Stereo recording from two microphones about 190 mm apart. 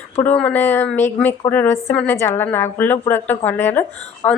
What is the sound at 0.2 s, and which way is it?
A woman's voice, 10° left (ahead or behind).